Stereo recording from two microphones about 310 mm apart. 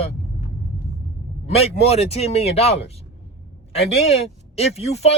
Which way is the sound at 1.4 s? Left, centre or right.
Centre.